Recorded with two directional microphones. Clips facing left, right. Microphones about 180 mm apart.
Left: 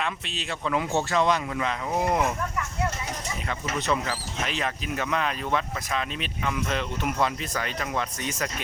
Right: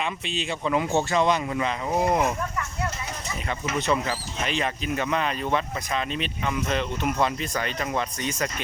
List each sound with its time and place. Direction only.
0.0 s speech: centre (ahead or behind)
3.8 s speech: centre (ahead or behind)